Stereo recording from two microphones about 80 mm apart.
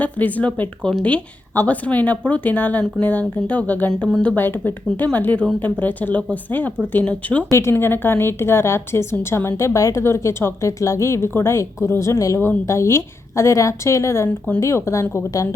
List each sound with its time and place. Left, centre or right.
0.0 s a woman's voice: centre
7.5 s speech: left
14.3 s a woman's voice: centre
14.6 s speech: left